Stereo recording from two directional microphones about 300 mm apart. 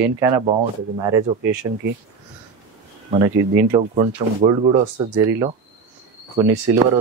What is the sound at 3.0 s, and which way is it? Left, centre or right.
Speech, centre.